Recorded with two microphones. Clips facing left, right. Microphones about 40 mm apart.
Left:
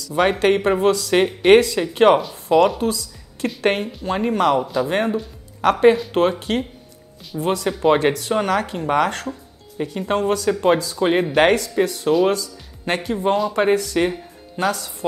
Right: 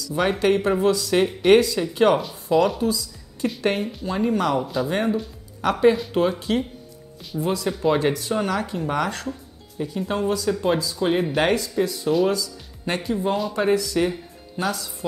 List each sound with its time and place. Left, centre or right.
0.0 s speech: left
2.8 s a sound: left
3.6 s speech: left
7.3 s speech: left
11.0 s speech: left
11.3 s speech: left